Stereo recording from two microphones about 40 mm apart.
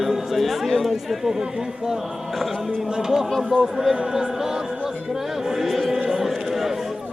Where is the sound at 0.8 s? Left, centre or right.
Centre.